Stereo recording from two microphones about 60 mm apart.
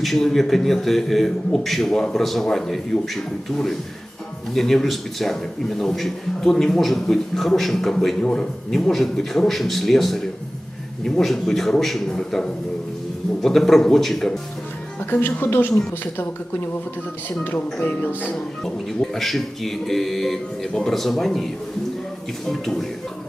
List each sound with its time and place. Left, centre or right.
0.0 s a man's voice: centre
4.5 s a man's voice: centre
15.2 s speech: left
17.2 s speech: left
19.1 s a man's voice: centre